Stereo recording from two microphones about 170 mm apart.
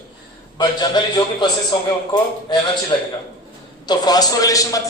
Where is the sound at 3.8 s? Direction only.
25° left (ahead or behind).